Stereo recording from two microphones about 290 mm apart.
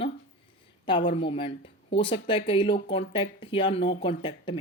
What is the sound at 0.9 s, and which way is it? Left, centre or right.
Speech, centre.